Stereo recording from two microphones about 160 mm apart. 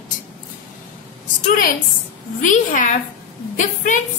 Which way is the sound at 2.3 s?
55° left (ahead or behind).